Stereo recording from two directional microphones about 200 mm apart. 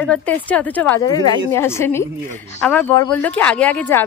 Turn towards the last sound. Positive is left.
turn(degrees=10)  # may be behind; listen again after turning